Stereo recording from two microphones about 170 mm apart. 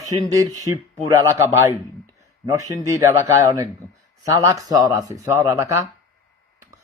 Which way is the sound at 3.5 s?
20° right (ahead or behind).